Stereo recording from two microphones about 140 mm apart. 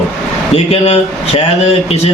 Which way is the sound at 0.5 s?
50° left (ahead or behind).